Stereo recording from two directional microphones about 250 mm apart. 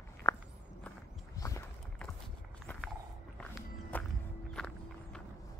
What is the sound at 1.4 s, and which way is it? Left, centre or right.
Boat, centre.